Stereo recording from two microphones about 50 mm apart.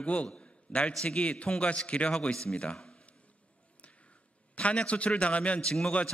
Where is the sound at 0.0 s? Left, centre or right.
Left.